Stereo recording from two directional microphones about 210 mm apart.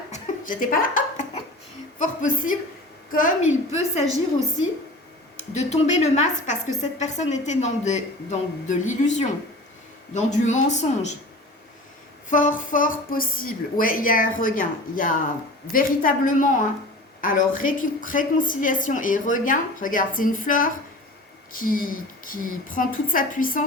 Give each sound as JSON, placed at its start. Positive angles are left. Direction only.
{"t": 0.1, "sound": "chuckle", "side_deg": 40}
{"t": 2.0, "sound": "a woman's voice", "side_deg": 40}
{"t": 5.5, "sound": "a woman's voice", "side_deg": 30}
{"t": 12.3, "sound": "a woman's voice", "side_deg": 40}